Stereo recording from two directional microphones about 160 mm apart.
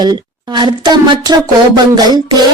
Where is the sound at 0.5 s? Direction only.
30° right (ahead or behind).